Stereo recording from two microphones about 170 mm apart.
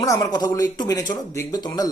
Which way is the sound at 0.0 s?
20° left (ahead or behind).